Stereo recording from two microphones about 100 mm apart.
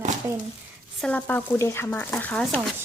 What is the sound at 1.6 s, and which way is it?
Speech, 25° left (ahead or behind).